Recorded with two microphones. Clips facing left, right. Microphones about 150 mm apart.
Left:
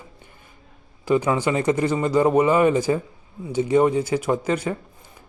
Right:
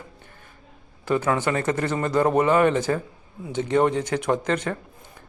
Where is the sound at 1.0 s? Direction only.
10° left (ahead or behind).